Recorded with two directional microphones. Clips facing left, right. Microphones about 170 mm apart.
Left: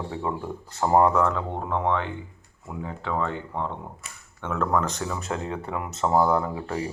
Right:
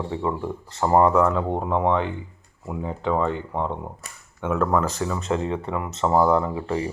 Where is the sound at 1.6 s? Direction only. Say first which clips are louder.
Right 2 dB; 15° right (ahead or behind).